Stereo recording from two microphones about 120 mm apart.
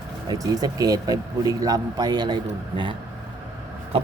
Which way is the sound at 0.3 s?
30° right (ahead or behind).